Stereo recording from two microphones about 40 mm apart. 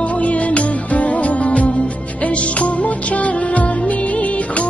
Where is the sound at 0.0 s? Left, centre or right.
Left.